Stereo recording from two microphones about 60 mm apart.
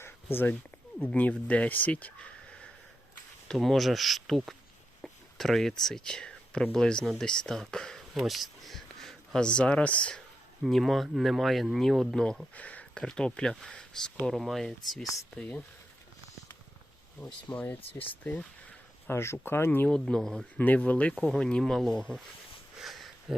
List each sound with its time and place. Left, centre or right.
0.0 s a sound: left
1.0 s speech: left
3.5 s speech: centre
7.0 s speech: centre
7.3 s speech: centre
10.7 s speech: centre
12.5 s a sound: left
13.0 s speech: centre
15.4 s speech: left
17.2 s speech: left
19.0 s speech: left
19.9 s speech: centre
20.6 s speech: left; by 21.9 s centre
22.8 s a sound: centre